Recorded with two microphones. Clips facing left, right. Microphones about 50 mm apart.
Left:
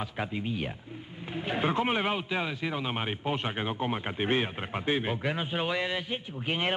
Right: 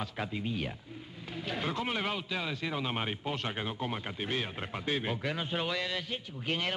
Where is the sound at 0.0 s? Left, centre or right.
Centre.